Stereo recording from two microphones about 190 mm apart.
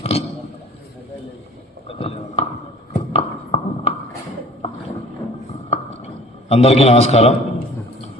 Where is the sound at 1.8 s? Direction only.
30° left (ahead or behind).